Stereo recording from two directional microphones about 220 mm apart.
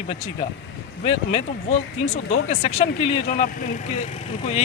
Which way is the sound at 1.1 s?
30° left (ahead or behind).